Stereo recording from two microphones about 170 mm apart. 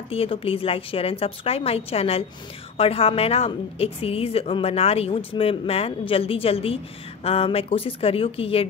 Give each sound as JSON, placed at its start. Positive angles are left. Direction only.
{"t": 0.1, "sound": "a woman's voice", "side_deg": 35}